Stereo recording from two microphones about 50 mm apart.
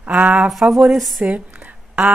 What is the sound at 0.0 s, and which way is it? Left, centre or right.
Speech, right.